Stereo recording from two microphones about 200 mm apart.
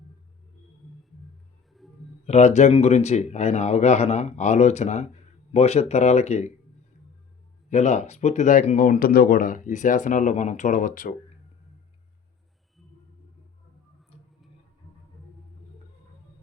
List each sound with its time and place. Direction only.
1.7 s a sound: centre (ahead or behind)
2.2 s speech: 35° left (ahead or behind)
7.7 s speech: 35° left (ahead or behind)